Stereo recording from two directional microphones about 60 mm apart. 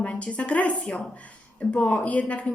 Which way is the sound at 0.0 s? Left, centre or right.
Centre.